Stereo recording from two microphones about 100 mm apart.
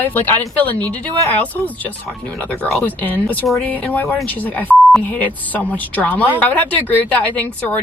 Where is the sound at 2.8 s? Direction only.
15° left (ahead or behind).